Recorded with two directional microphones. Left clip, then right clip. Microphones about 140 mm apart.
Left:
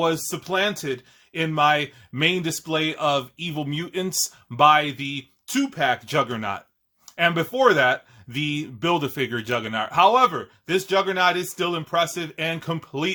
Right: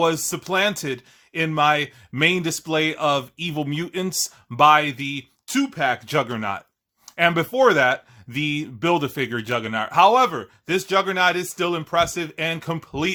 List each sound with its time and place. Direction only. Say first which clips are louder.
0.0 s speech: right 2 dB; 45° right (ahead or behind)
1.3 s speech: right 1 dB; 35° right (ahead or behind)